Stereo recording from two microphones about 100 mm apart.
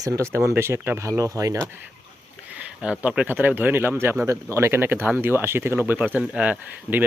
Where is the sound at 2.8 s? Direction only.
10° right (ahead or behind).